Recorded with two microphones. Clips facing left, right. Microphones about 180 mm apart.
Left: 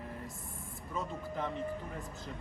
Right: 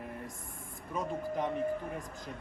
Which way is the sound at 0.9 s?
15° right (ahead or behind).